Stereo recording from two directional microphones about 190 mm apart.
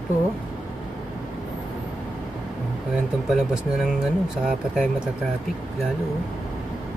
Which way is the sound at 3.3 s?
Centre (ahead or behind).